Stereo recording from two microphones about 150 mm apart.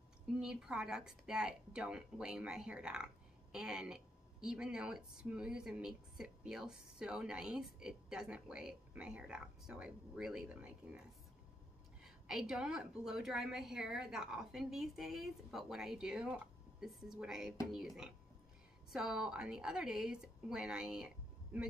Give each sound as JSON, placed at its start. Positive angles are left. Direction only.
{"t": 0.4, "sound": "a woman's voice", "side_deg": -5}